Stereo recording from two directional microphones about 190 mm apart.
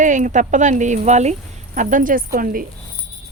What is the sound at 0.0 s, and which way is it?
Speech, 40° right (ahead or behind).